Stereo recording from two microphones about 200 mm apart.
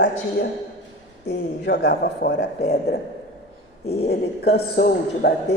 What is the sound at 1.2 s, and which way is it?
A man's voice, 55° left (ahead or behind).